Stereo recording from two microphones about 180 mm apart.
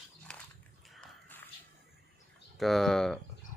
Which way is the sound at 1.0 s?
10° left (ahead or behind).